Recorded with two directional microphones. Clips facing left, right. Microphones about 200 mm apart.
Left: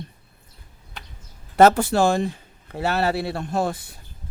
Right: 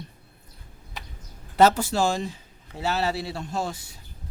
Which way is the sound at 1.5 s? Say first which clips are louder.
Left 4 dB; 55° left (ahead or behind).